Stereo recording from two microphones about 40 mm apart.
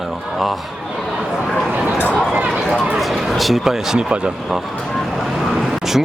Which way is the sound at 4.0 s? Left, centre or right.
Right.